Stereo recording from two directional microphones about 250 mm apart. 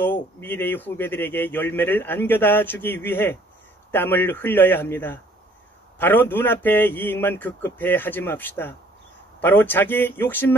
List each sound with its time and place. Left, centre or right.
0.0 s speech: centre